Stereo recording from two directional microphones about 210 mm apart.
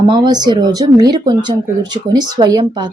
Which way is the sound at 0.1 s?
20° right (ahead or behind).